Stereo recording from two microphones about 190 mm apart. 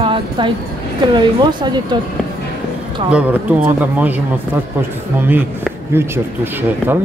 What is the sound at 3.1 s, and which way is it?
Speech, 5° right (ahead or behind).